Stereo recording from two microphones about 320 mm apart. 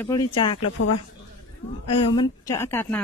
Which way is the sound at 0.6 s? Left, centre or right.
Left.